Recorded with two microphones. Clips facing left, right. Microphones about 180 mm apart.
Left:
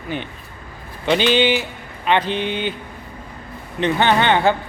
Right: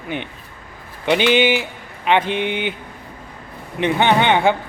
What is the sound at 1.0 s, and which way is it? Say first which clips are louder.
Speech: right 1 dB; 15° right (ahead or behind).